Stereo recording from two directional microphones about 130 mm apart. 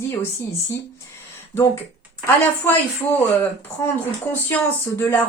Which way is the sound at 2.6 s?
15° left (ahead or behind).